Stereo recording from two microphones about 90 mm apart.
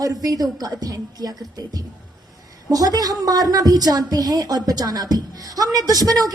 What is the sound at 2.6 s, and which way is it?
A woman's voice, 45° right (ahead or behind).